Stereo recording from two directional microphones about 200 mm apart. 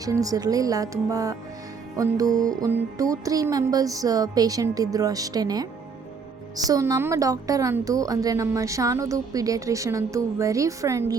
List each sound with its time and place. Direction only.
0.0 s a woman's voice: 15° right (ahead or behind)
6.7 s a woman's voice: 15° right (ahead or behind)